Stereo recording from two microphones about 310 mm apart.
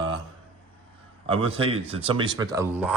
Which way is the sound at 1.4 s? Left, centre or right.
Centre.